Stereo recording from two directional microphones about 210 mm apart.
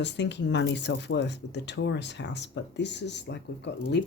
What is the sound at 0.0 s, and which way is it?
Speech, 55° left (ahead or behind).